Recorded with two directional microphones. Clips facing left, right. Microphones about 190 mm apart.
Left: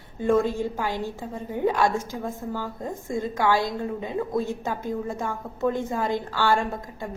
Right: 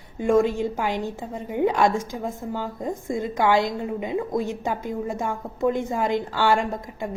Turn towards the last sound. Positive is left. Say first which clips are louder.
# right 2 dB
turn(degrees=-20)  # may be behind; listen again after turning